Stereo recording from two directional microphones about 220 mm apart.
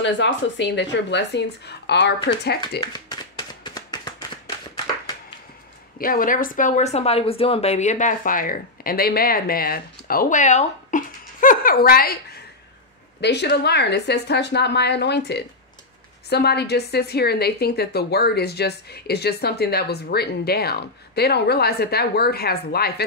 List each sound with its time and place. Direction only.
0.0 s a woman's voice: 55° left (ahead or behind)
3.6 s a sound: 20° left (ahead or behind)
5.9 s speech: 40° left (ahead or behind)
13.2 s a woman's voice: 50° left (ahead or behind)